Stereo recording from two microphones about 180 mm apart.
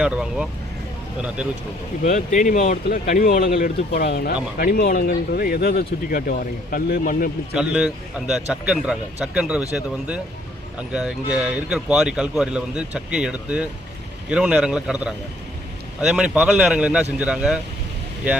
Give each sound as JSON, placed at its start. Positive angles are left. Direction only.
{"t": 0.0, "sound": "speech", "side_deg": -5}
{"t": 2.0, "sound": "speech", "side_deg": 45}
{"t": 7.5, "sound": "speech", "side_deg": -5}
{"t": 10.8, "sound": "speech", "side_deg": -5}